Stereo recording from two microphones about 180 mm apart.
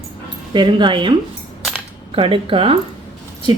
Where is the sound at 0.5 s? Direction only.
25° right (ahead or behind).